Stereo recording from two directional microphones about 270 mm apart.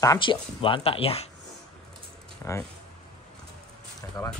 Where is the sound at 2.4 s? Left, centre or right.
Centre.